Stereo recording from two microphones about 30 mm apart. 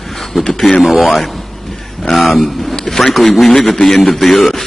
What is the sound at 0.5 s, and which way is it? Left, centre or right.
Speech, centre.